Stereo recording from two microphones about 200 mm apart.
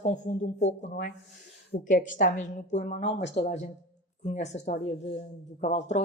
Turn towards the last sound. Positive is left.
turn(degrees=35)  # may be behind; listen again after turning